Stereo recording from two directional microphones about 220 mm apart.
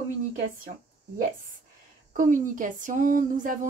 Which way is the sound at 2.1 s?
35° right (ahead or behind).